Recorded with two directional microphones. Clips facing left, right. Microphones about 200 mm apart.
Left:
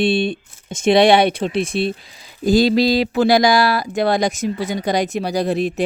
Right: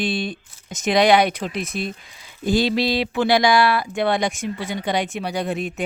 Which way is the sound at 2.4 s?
40° left (ahead or behind).